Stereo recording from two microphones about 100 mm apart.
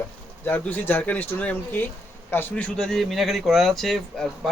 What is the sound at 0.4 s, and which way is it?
A man's voice, 15° left (ahead or behind).